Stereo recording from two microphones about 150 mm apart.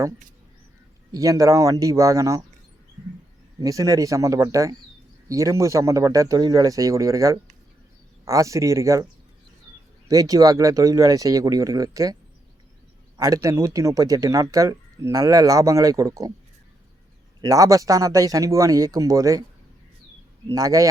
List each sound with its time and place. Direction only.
1.1 s speech: 20° right (ahead or behind)
3.6 s speech: 20° right (ahead or behind)
10.1 s speech: 25° right (ahead or behind)
13.1 s speech: 20° right (ahead or behind)
17.4 s speech: 20° right (ahead or behind)
20.5 s speech: 20° right (ahead or behind)